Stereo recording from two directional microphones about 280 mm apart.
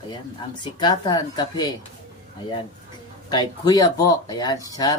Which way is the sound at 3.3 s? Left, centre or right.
Centre.